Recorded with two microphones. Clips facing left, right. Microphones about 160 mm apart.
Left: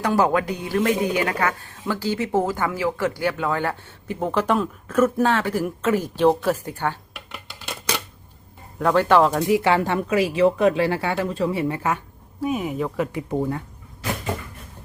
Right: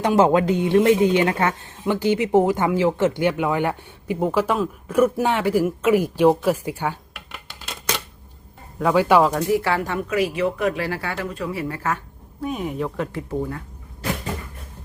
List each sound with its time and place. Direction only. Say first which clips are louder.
0.0 s speech: right 3 dB; 20° right (ahead or behind)
8.8 s speech: even; 5° right (ahead or behind)
9.5 s speech: left 2 dB; 20° left (ahead or behind)
12.5 s speech: left 1 dB; 5° left (ahead or behind)